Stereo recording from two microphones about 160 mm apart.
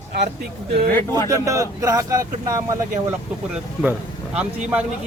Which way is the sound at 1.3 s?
20° right (ahead or behind).